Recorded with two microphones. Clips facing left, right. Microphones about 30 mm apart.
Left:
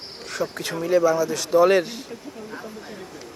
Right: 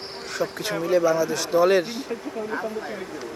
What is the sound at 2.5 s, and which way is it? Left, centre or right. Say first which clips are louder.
Speech: right 7 dB; right.